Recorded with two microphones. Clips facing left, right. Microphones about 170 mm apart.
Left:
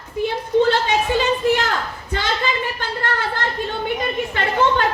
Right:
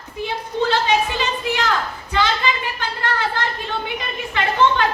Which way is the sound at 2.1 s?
45° left (ahead or behind).